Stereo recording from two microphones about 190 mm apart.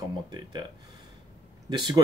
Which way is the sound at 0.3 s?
25° right (ahead or behind).